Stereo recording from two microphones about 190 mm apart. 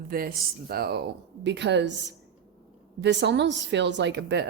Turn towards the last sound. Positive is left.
turn(degrees=-65)  # may be behind; listen again after turning